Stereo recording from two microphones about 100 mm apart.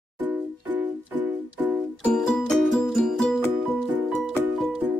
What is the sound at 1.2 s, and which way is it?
Music, 15° right (ahead or behind).